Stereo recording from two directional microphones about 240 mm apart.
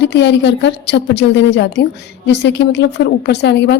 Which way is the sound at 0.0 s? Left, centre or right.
Left.